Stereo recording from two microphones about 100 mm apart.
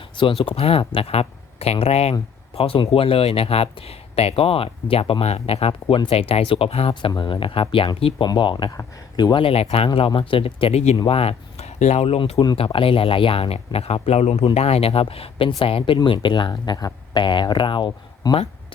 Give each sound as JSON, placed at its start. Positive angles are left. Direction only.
{"t": 0.4, "sound": "speech", "side_deg": 70}
{"t": 2.6, "sound": "speech", "side_deg": 70}
{"t": 5.2, "sound": "a man's voice", "side_deg": 90}
{"t": 5.9, "sound": "speech", "side_deg": 70}
{"t": 7.2, "sound": "speech", "side_deg": 60}
{"t": 8.3, "sound": "speech", "side_deg": 50}
{"t": 9.5, "sound": "speech", "side_deg": 75}
{"t": 11.0, "sound": "speech", "side_deg": 75}
{"t": 13.7, "sound": "a man's voice", "side_deg": 90}
{"t": 16.0, "sound": "speech", "side_deg": 55}